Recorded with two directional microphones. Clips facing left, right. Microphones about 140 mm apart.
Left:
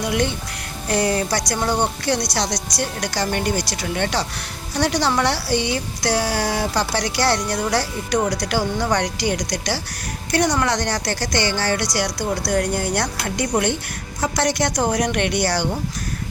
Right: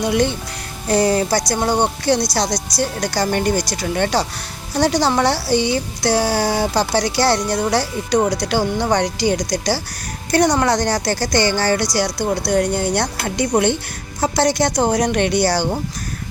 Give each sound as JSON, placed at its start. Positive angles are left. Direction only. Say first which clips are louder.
{"t": 0.0, "sound": "speech", "louder": "right 4 dB", "side_deg": -30}